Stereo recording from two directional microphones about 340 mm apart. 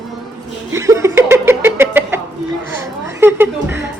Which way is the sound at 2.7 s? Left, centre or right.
Centre.